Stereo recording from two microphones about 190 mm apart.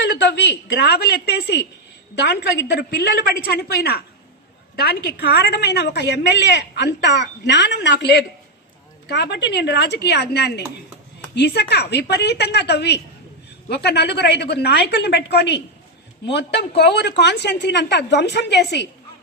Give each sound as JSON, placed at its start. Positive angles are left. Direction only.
{"t": 0.0, "sound": "a woman's voice", "side_deg": 65}